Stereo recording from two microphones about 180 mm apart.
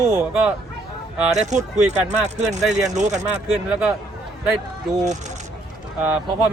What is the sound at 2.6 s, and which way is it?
Speech, centre (ahead or behind).